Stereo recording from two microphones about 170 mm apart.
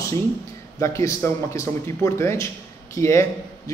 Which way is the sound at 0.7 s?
20° left (ahead or behind).